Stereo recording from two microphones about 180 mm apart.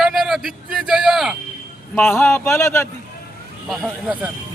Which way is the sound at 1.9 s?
10° left (ahead or behind).